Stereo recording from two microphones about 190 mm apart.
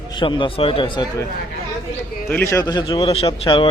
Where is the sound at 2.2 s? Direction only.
15° left (ahead or behind); by 3.7 s 30° left (ahead or behind).